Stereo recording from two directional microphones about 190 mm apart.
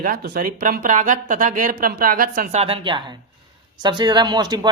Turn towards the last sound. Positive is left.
turn(degrees=-20)  # may be behind; listen again after turning